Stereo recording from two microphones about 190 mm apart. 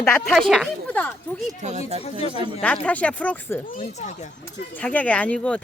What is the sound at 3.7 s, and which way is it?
Speech, 35° left (ahead or behind).